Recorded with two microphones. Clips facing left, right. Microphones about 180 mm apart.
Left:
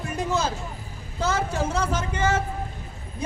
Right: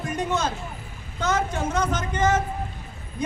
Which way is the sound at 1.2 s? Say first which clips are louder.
Even; 30° left (ahead or behind).